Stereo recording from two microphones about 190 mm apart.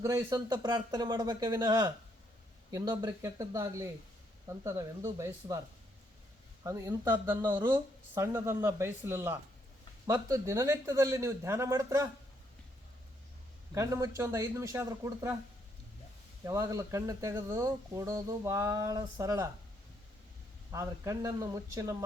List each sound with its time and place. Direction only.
0.0 s speech: 20° right (ahead or behind)
13.7 s speech: 15° right (ahead or behind)
16.4 s speech: 15° right (ahead or behind)
20.7 s speech: 15° right (ahead or behind)